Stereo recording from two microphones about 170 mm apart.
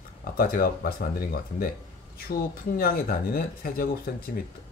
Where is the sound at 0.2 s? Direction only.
60° left (ahead or behind).